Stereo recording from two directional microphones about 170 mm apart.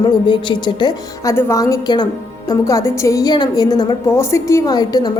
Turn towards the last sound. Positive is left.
turn(degrees=25)  # may be behind; listen again after turning